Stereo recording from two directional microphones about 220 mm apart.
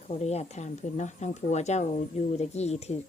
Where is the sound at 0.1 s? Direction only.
30° left (ahead or behind).